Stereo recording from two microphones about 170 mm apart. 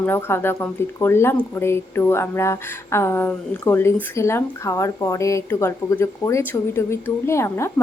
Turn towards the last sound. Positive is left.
turn(degrees=15)  # may be behind; listen again after turning